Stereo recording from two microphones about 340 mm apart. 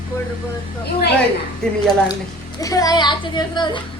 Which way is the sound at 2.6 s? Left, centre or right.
Centre.